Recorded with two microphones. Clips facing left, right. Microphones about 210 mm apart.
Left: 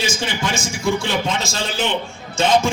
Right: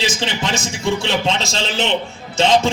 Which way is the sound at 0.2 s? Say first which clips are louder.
Right 1 dB; 25° right (ahead or behind).